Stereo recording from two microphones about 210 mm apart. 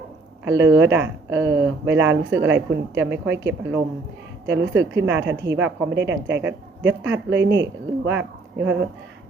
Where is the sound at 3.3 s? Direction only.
55° right (ahead or behind).